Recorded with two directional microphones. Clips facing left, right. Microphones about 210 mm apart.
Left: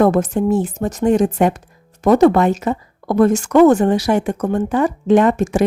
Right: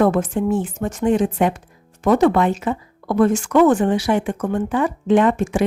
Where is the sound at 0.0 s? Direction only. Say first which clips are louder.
Left 3 dB; 40° left (ahead or behind).